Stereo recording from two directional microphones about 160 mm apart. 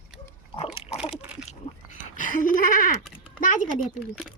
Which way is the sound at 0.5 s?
35° left (ahead or behind).